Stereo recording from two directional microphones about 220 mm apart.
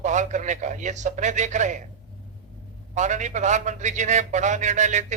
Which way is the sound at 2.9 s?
35° right (ahead or behind).